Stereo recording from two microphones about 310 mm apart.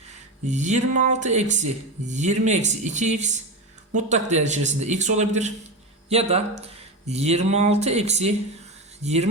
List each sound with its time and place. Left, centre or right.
0.1 s speech: right